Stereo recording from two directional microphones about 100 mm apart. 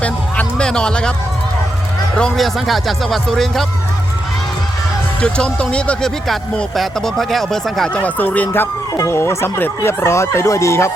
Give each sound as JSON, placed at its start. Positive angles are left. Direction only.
{"t": 0.0, "sound": "music", "side_deg": 10}
{"t": 2.1, "sound": "speech", "side_deg": 5}
{"t": 5.2, "sound": "speech", "side_deg": 10}
{"t": 7.9, "sound": "speech", "side_deg": 15}
{"t": 9.0, "sound": "speech", "side_deg": 30}